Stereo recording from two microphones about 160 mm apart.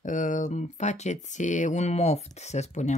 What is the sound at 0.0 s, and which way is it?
Speech, 55° left (ahead or behind).